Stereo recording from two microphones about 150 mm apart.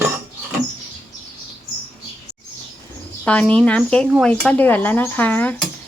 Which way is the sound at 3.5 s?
5° left (ahead or behind).